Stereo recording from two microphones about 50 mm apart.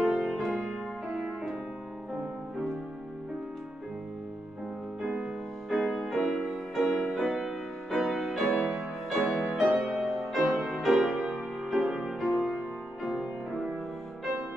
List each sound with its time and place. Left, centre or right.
0.0 s music: centre
5.0 s music: centre
5.7 s music: centre